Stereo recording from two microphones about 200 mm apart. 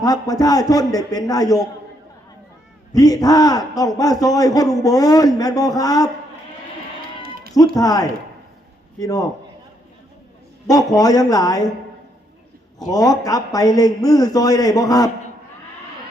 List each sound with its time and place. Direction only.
0.0 s a man's voice: 20° left (ahead or behind)
2.9 s a man's voice: 20° left (ahead or behind)
7.8 s a man's voice: 20° left (ahead or behind)
10.7 s a man's voice: 20° left (ahead or behind)
12.8 s a man's voice: 20° left (ahead or behind)